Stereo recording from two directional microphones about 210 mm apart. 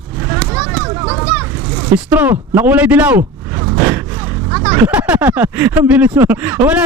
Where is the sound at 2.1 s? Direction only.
10° right (ahead or behind).